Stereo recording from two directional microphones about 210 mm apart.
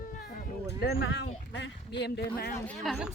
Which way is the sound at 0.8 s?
55° left (ahead or behind).